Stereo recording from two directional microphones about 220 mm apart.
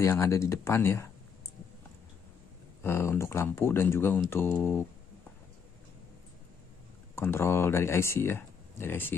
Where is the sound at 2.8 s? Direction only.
10° left (ahead or behind).